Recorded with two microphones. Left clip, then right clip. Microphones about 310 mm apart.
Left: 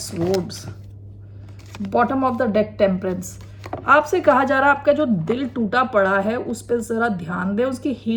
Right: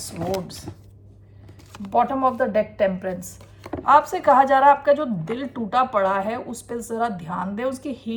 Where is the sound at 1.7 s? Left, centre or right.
Centre.